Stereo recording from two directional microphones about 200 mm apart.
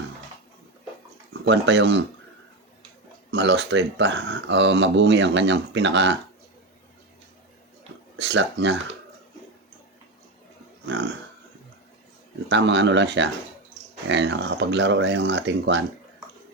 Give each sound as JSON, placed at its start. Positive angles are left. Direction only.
{"t": 1.3, "sound": "speech", "side_deg": -60}
{"t": 3.3, "sound": "speech", "side_deg": -60}
{"t": 8.1, "sound": "speech", "side_deg": -65}
{"t": 12.5, "sound": "speech", "side_deg": -65}